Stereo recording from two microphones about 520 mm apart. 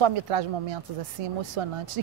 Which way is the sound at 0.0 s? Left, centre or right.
Right.